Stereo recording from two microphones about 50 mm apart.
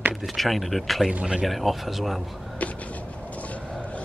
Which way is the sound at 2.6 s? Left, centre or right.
Left.